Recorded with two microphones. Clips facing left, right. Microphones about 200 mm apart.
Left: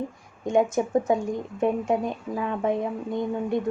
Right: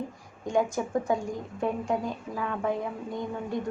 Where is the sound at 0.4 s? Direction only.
20° left (ahead or behind).